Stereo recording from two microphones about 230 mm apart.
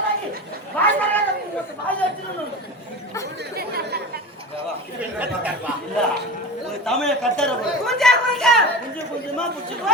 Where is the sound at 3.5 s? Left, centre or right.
Right.